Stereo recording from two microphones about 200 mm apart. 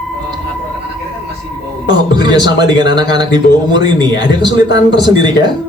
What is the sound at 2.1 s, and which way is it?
Speech, 20° right (ahead or behind).